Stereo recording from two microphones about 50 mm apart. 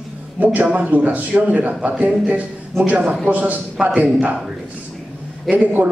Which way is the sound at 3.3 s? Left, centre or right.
Right.